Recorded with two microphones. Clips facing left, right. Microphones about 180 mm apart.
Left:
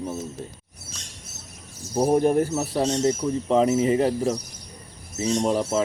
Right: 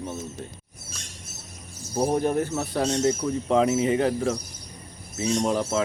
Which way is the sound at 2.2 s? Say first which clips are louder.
Left 4 dB; 30° left (ahead or behind).